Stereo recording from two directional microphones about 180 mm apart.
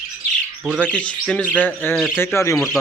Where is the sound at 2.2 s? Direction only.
15° left (ahead or behind).